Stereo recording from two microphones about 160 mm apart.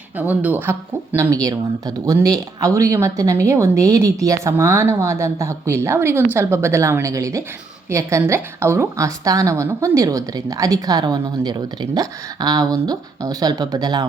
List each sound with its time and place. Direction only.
0.2 s a woman's voice: 10° right (ahead or behind); by 14.1 s 25° right (ahead or behind)